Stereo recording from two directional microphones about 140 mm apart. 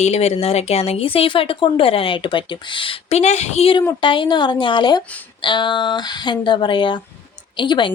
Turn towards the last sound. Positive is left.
turn(degrees=35)  # may be behind; listen again after turning